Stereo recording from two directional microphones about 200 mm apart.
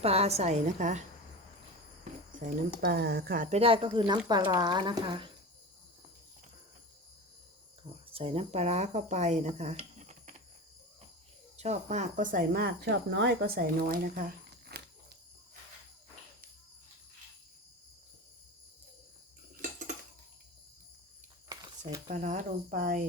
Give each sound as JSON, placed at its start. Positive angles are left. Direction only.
{"t": 0.0, "sound": "a woman's voice", "side_deg": -30}
{"t": 2.5, "sound": "speech", "side_deg": -55}
{"t": 3.6, "sound": "speech", "side_deg": -25}
{"t": 8.1, "sound": "speech", "side_deg": -30}
{"t": 11.5, "sound": "speech", "side_deg": -35}
{"t": 14.7, "sound": "a sound", "side_deg": -55}
{"t": 19.6, "sound": "cutlery", "side_deg": -40}
{"t": 21.5, "sound": "a sound", "side_deg": -20}
{"t": 22.1, "sound": "a woman's voice", "side_deg": -40}